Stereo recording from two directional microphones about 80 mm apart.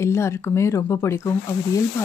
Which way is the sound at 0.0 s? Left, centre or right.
Left.